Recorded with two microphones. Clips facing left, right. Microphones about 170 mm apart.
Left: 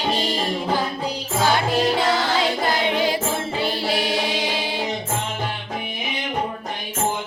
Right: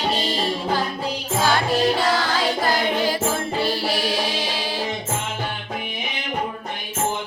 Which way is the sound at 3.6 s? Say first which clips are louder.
Left 1 dB; 20° left (ahead or behind).